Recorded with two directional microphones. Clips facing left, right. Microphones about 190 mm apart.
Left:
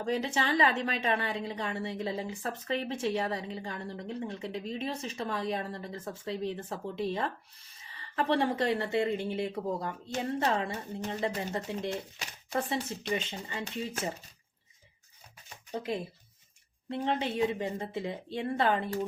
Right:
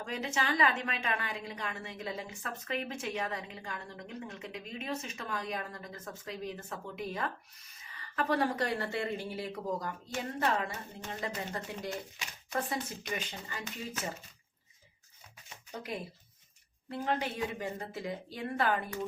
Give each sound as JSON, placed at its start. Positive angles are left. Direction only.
{"t": 0.0, "sound": "a woman's voice", "side_deg": 30}
{"t": 15.7, "sound": "a woman's voice", "side_deg": 25}